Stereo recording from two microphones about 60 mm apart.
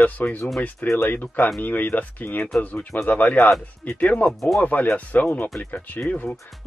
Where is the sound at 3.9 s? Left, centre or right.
Left.